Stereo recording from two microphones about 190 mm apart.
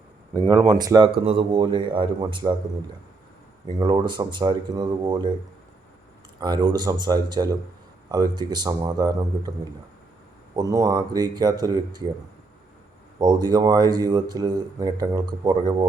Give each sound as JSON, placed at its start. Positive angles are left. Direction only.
{"t": 0.4, "sound": "speech", "side_deg": -25}
{"t": 3.7, "sound": "speech", "side_deg": -25}
{"t": 6.4, "sound": "speech", "side_deg": -20}
{"t": 10.5, "sound": "speech", "side_deg": -20}
{"t": 13.1, "sound": "speech", "side_deg": -20}